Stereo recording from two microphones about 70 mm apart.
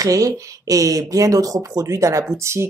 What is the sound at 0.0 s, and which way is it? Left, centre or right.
Speech, right.